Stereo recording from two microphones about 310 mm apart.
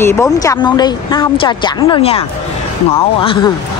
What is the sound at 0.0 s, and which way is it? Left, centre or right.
Speech, centre.